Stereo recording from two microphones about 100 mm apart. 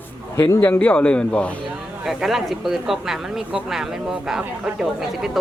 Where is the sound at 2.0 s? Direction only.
5° right (ahead or behind).